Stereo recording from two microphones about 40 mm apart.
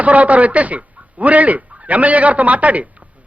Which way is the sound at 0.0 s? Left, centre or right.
Right.